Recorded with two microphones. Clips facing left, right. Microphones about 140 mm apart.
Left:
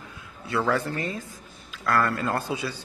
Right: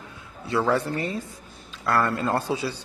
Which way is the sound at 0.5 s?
25° right (ahead or behind).